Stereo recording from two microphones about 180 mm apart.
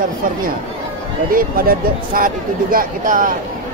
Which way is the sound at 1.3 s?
55° right (ahead or behind).